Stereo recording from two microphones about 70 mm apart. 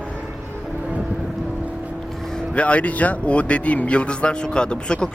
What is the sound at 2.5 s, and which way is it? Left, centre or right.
A man's voice, centre.